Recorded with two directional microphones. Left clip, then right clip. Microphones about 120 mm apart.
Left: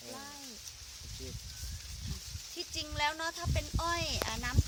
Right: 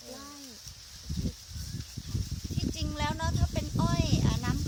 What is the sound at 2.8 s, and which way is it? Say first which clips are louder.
Speech: left 1 dB; 25° left (ahead or behind).